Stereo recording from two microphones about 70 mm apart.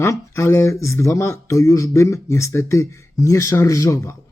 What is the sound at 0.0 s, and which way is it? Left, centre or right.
Speech, left.